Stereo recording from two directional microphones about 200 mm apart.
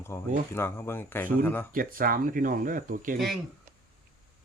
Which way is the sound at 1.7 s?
45° right (ahead or behind).